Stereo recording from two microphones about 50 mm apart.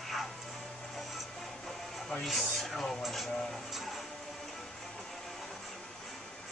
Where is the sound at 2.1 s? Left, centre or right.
Centre.